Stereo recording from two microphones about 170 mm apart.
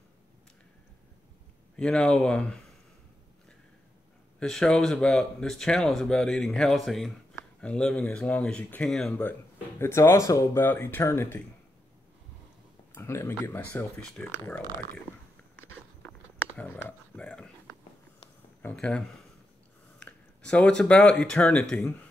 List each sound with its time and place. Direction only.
1.8 s speech: 5° left (ahead or behind)
4.4 s speech: 5° left (ahead or behind)
9.8 s speech: 15° left (ahead or behind)
12.9 s speech: 15° left (ahead or behind)
16.5 s a sound: 5° left (ahead or behind)
18.6 s speech: 5° left (ahead or behind)